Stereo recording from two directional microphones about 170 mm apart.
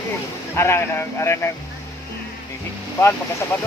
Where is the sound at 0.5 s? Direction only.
15° left (ahead or behind).